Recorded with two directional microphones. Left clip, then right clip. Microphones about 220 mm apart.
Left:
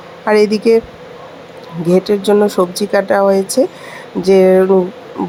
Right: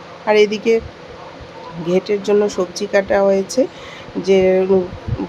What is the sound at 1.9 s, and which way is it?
Speech, 25° left (ahead or behind).